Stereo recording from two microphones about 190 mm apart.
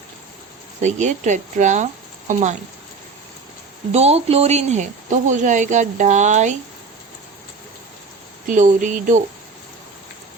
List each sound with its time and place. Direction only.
0.8 s speech: 40° right (ahead or behind)
3.9 s speech: 35° right (ahead or behind)
8.4 s speech: 40° right (ahead or behind)